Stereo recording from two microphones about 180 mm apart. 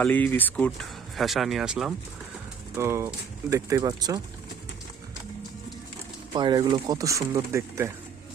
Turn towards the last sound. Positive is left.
turn(degrees=-15)  # may be behind; listen again after turning